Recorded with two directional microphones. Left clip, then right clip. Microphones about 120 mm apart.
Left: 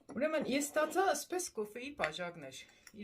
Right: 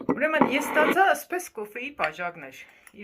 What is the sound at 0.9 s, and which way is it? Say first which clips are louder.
Speech: right 11 dB; 20° left (ahead or behind).